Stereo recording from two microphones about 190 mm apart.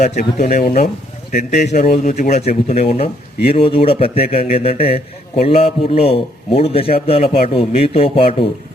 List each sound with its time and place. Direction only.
0.2 s speech: 45° left (ahead or behind)